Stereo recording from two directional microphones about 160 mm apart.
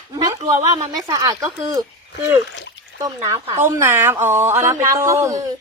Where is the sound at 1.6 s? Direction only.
25° right (ahead or behind).